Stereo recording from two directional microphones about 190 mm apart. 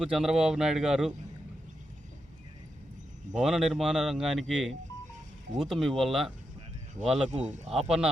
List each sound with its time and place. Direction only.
0.0 s speech: 5° right (ahead or behind)
3.3 s speech: 5° right (ahead or behind)